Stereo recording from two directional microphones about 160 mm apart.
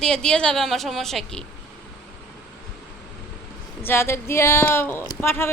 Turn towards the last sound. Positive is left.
turn(degrees=15)  # may be behind; listen again after turning